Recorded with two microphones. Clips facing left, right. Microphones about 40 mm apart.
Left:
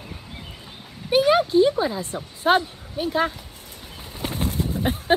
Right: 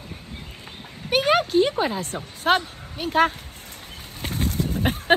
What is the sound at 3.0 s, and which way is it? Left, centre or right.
Speech, right.